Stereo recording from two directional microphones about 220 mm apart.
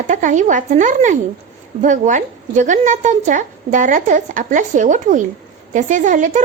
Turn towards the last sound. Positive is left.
turn(degrees=-35)  # may be behind; listen again after turning